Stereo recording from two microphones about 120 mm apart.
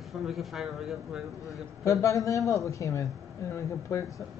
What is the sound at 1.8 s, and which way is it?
A man's voice, 25° left (ahead or behind).